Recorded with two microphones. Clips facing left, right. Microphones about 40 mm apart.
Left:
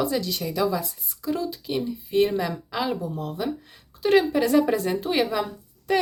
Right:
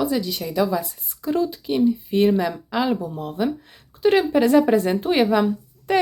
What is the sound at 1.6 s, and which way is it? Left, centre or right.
Speech, centre.